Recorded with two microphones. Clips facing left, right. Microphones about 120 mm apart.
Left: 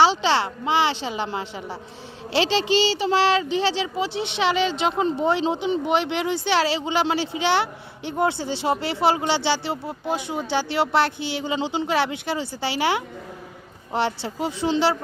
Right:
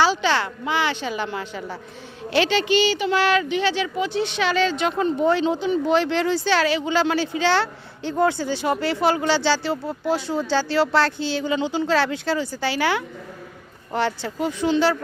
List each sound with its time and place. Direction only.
0.0 s speech: 25° left (ahead or behind)